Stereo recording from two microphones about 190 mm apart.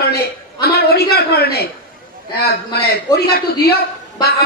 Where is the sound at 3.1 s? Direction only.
60° left (ahead or behind).